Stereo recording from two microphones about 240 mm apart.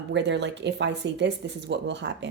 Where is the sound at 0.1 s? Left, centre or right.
Right.